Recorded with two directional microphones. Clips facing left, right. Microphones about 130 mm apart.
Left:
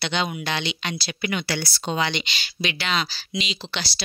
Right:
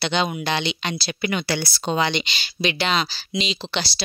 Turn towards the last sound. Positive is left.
turn(degrees=-25)  # may be behind; listen again after turning